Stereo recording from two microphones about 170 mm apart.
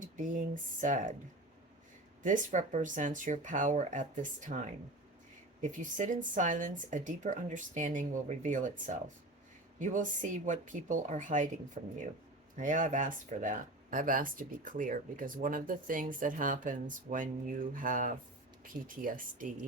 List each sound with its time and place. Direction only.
0.0 s speech: 50° right (ahead or behind)
2.2 s speech: 45° right (ahead or behind)